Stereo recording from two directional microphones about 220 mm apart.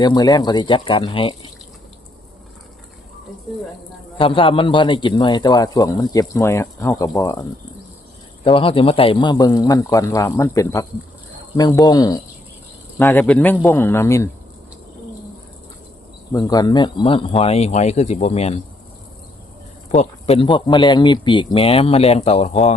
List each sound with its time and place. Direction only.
0.0 s speech: 20° left (ahead or behind)
4.2 s speech: 25° left (ahead or behind)
8.4 s speech: 25° left (ahead or behind)
16.3 s speech: 15° left (ahead or behind)
19.9 s speech: 30° left (ahead or behind)